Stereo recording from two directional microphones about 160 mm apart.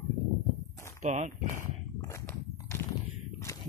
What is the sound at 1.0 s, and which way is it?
Speech, 45° right (ahead or behind).